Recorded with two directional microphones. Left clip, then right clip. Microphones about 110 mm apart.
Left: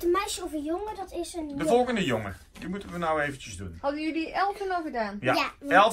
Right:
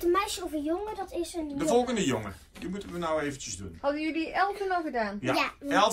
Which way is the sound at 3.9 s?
10° left (ahead or behind).